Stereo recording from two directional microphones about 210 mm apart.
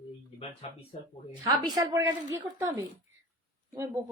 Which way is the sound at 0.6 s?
30° left (ahead or behind).